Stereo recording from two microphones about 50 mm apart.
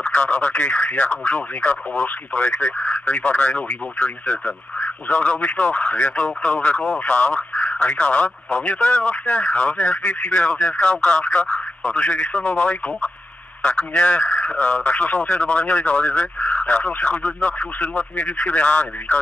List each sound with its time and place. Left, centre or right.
0.0 s speech: left